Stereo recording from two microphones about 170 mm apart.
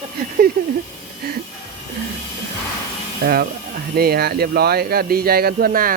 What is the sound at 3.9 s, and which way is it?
Speech, 65° right (ahead or behind).